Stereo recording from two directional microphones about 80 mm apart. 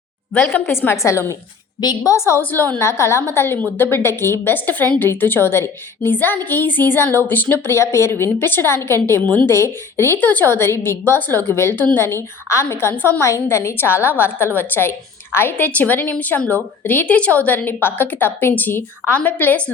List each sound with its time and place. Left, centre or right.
0.4 s a woman's voice: left
1.8 s a woman's voice: left
2.1 s a woman's voice: left